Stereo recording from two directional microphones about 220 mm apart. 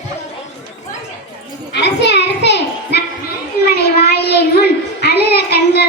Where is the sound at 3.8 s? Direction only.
45° left (ahead or behind).